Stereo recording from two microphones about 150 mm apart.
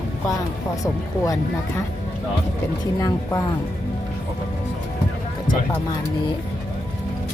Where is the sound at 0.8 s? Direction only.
20° left (ahead or behind).